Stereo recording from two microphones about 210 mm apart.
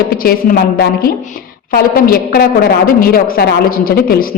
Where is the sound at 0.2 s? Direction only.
45° left (ahead or behind).